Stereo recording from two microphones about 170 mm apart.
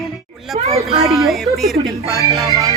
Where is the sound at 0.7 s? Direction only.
35° right (ahead or behind).